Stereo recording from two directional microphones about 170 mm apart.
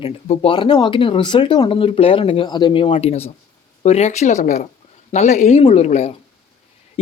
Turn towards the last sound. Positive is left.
turn(degrees=40)  # may be behind; listen again after turning